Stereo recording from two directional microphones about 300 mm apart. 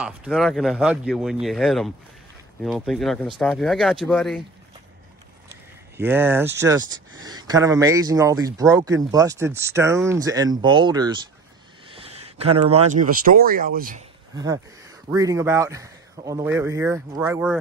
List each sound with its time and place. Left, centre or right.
0.0 s speech: centre
5.5 s a sound: centre
6.6 s speech: centre; by 14.0 s right
14.3 s speech: centre